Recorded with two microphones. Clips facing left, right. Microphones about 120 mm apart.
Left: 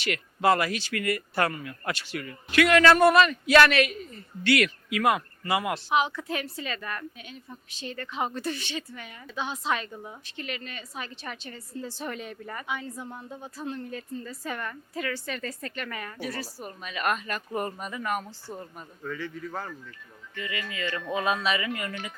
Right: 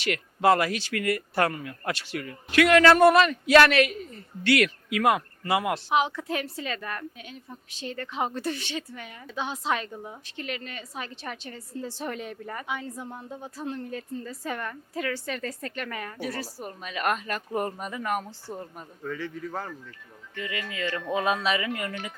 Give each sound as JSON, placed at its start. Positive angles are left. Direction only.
{"t": 0.0, "sound": "speech", "side_deg": -50}
{"t": 9.9, "sound": "a woman's voice", "side_deg": -30}
{"t": 10.3, "sound": "speech", "side_deg": -45}
{"t": 12.9, "sound": "a woman's voice", "side_deg": -30}
{"t": 18.3, "sound": "a woman's voice", "side_deg": -30}